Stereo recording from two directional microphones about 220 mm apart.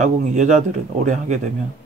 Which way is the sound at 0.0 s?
35° right (ahead or behind).